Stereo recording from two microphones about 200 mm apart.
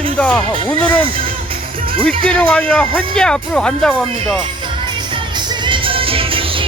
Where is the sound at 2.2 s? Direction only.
5° left (ahead or behind).